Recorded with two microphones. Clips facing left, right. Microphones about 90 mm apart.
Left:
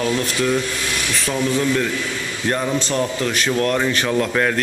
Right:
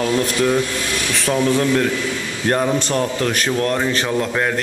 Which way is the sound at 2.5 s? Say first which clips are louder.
Right 3 dB; 30° right (ahead or behind).